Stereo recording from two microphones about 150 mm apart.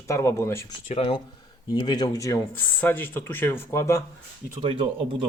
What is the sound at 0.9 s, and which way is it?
Speech, 40° left (ahead or behind).